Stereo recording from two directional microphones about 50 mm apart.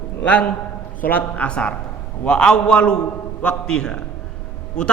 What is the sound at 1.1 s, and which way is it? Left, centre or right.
A man's voice, left.